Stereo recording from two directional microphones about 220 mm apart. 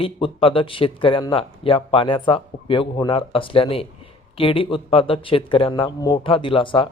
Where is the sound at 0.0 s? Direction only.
25° left (ahead or behind).